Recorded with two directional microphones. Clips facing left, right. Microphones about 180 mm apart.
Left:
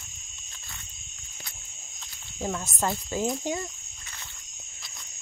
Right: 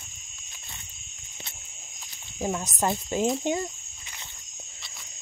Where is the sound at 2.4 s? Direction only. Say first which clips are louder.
Right 2 dB; 15° right (ahead or behind).